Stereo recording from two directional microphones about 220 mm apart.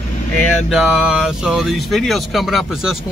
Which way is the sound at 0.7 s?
Centre (ahead or behind).